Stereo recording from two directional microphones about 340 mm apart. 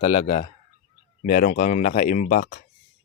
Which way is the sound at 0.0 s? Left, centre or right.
Centre.